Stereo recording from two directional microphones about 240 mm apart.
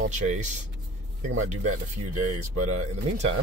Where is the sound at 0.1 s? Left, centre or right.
Right.